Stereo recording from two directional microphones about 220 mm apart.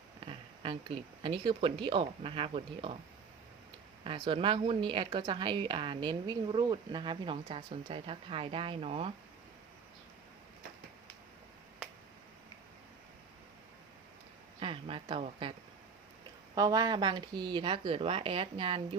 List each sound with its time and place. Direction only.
0.3 s speech: 20° right (ahead or behind)
4.0 s speech: 25° right (ahead or behind)
14.6 s speech: 25° right (ahead or behind)
16.6 s speech: 15° right (ahead or behind)